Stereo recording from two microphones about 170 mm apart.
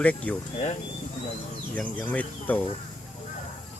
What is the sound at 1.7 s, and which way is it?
Speech, 10° left (ahead or behind).